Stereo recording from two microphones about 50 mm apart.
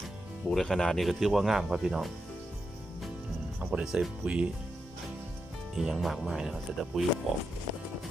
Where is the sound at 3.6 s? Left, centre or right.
Right.